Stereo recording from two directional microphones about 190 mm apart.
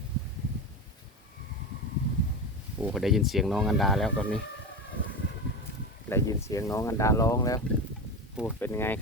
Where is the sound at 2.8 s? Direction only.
5° right (ahead or behind).